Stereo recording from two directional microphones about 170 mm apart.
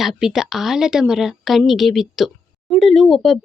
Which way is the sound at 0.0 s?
Centre (ahead or behind).